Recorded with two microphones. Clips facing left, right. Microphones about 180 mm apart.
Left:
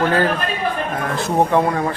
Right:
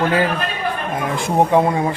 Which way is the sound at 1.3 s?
15° right (ahead or behind).